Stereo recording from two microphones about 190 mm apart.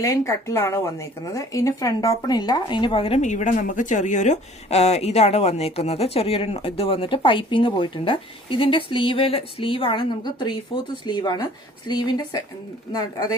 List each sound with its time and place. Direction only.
0.0 s speech: 15° left (ahead or behind)